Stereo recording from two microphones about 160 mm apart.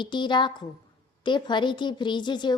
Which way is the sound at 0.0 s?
30° left (ahead or behind).